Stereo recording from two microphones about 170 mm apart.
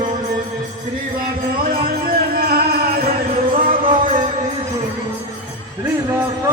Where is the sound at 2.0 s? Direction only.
60° right (ahead or behind).